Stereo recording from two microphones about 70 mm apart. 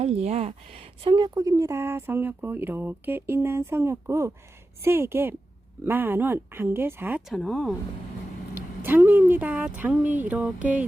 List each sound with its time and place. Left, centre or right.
1.1 s speech: right
7.3 s speech: centre
8.8 s speech: right